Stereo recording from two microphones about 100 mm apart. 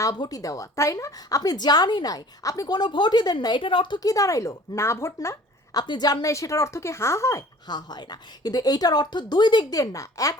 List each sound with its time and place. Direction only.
0.0 s a woman's voice: 35° left (ahead or behind); by 4.0 s 55° left (ahead or behind)
4.0 s speech: 35° left (ahead or behind)
5.8 s speech: 45° left (ahead or behind); by 7.4 s 30° left (ahead or behind)
7.7 s a woman's voice: 45° left (ahead or behind)